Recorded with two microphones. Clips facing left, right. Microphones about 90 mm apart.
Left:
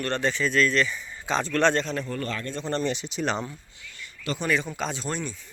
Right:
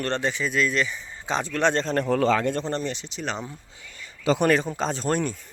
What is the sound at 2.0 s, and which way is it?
Speech, 90° right.